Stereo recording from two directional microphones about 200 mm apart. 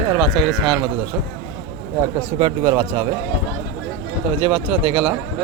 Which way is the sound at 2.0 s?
15° right (ahead or behind).